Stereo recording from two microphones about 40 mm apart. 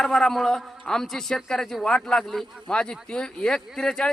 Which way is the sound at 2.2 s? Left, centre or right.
Centre.